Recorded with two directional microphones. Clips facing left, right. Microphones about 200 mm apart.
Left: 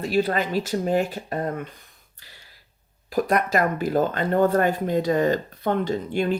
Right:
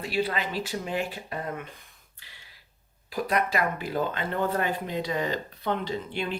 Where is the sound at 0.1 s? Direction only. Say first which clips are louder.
Left 6 dB; 45° left (ahead or behind).